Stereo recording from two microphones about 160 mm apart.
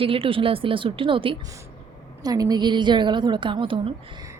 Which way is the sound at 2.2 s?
25° right (ahead or behind).